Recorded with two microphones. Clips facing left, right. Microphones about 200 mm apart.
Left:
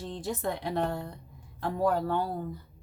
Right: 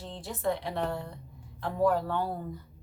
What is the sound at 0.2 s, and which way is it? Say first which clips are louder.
Speech: right 2 dB; 45° left (ahead or behind).